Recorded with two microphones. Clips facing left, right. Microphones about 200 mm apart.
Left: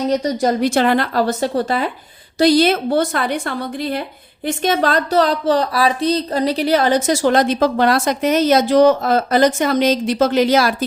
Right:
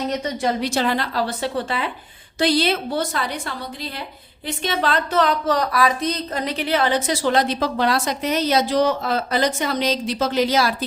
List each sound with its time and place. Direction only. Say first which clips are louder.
0.1 s a woman's voice: left 6 dB; 40° left (ahead or behind); by 10.8 s 55° left (ahead or behind)